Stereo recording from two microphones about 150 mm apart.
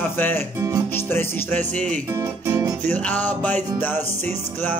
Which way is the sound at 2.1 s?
20° right (ahead or behind).